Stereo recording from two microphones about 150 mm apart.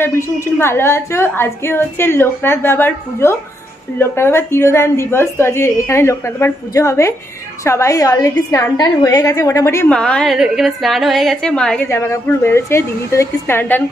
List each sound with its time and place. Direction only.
0.0 s a woman's voice: 20° left (ahead or behind)
9.8 s a woman's voice: 5° left (ahead or behind)
11.9 s a woman's voice: 15° left (ahead or behind)